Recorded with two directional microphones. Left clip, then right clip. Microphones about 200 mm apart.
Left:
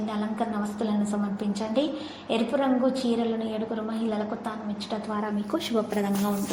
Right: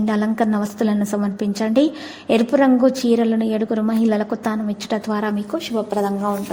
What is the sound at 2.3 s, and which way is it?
A woman's voice, 40° right (ahead or behind).